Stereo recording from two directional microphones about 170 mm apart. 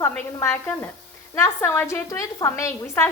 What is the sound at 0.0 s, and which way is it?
A woman's voice, 15° left (ahead or behind).